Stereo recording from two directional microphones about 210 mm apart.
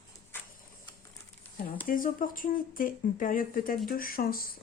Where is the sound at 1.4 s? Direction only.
10° left (ahead or behind).